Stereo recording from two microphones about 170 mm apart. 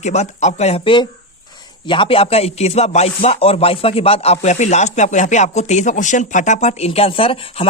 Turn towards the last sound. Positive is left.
turn(degrees=35)  # may be behind; listen again after turning